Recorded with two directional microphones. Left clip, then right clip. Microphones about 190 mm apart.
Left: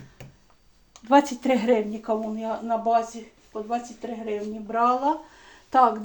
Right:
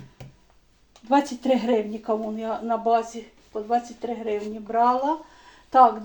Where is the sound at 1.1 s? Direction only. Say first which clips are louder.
Left 1 dB; 20° left (ahead or behind).